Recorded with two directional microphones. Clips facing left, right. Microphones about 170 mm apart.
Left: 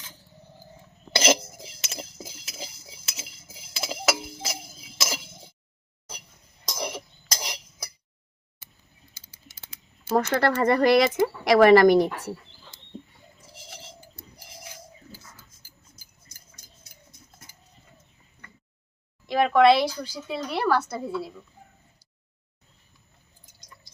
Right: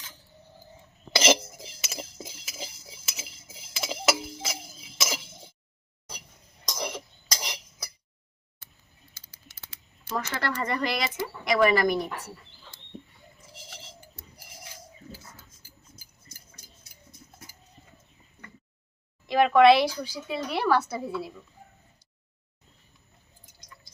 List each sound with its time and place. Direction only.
1.2 s cutlery: centre (ahead or behind)
4.9 s a sound: centre (ahead or behind)
6.7 s cough: 15° left (ahead or behind)
10.2 s speech: 50° left (ahead or behind); by 12.0 s 70° left (ahead or behind)
19.3 s speech: centre (ahead or behind)